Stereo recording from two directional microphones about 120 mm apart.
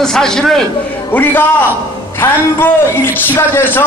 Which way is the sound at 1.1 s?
15° left (ahead or behind).